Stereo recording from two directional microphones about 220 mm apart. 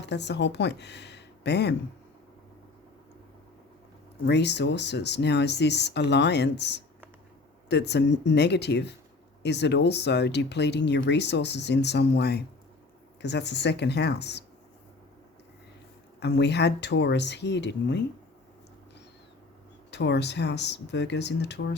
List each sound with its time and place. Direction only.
0.0 s speech: 50° left (ahead or behind)
4.3 s speech: 50° left (ahead or behind)
16.2 s speech: 50° left (ahead or behind)
19.9 s speech: 50° left (ahead or behind)